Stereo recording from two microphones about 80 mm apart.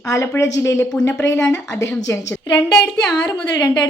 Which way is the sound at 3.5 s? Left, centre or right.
Left.